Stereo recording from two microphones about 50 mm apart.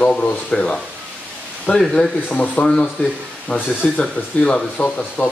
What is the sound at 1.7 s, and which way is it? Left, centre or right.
Speech, left.